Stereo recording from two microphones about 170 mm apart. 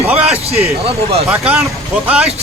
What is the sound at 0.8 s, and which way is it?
Speech, 35° right (ahead or behind).